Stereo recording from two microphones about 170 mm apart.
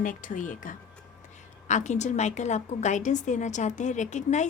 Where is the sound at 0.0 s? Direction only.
50° left (ahead or behind).